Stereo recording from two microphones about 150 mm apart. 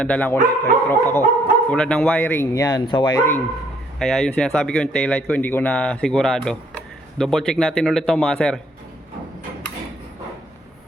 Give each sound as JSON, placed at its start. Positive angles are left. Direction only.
{"t": 0.0, "sound": "speech", "side_deg": 10}
{"t": 4.0, "sound": "speech", "side_deg": 0}